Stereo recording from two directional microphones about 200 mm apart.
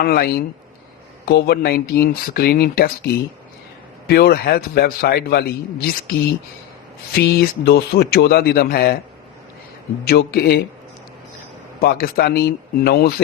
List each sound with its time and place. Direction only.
0.0 s a man's voice: 50° left (ahead or behind)
4.0 s a man's voice: 50° left (ahead or behind)
10.0 s a man's voice: 50° left (ahead or behind)
11.8 s a man's voice: 50° left (ahead or behind)